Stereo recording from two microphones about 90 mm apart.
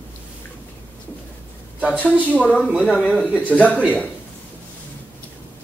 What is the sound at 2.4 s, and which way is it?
Speech, 15° left (ahead or behind).